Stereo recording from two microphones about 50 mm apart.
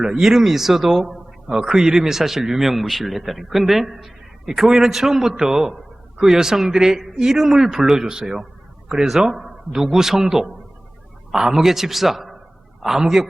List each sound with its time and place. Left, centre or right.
0.0 s a man's voice: centre